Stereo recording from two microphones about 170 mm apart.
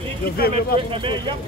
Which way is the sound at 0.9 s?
30° right (ahead or behind).